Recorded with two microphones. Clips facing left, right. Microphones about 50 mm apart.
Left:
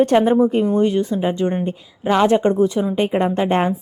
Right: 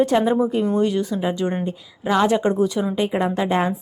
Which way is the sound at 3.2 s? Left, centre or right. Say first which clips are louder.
Left 2 dB; left.